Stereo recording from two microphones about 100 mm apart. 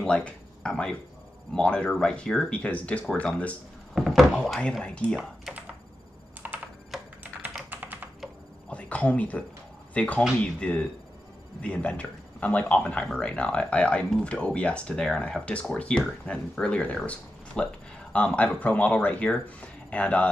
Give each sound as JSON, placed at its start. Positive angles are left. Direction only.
{"t": 0.0, "sound": "a sound", "side_deg": 10}
{"t": 1.5, "sound": "speech", "side_deg": 10}
{"t": 3.9, "sound": "speech", "side_deg": 0}
{"t": 6.4, "sound": "computer keyboard", "side_deg": -20}
{"t": 7.7, "sound": "computer keyboard", "side_deg": -20}
{"t": 8.6, "sound": "whispering", "side_deg": 10}
{"t": 9.9, "sound": "speech", "side_deg": 15}